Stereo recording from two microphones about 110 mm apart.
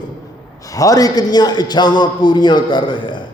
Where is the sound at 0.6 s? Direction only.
30° left (ahead or behind).